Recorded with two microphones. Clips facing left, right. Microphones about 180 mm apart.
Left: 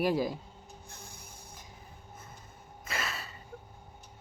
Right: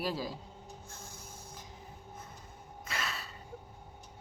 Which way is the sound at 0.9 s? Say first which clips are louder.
Right 1 dB; 15° left (ahead or behind).